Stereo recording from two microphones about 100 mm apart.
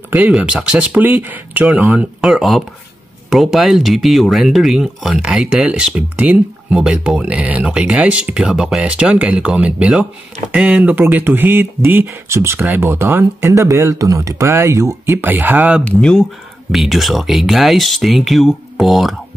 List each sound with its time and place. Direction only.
0.3 s speech: 10° right (ahead or behind); by 15.1 s 30° right (ahead or behind)
15.1 s speech: 20° right (ahead or behind)
15.8 s speech: 5° left (ahead or behind)